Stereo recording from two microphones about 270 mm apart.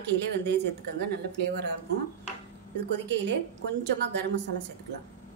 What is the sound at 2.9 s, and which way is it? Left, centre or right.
Speech, right.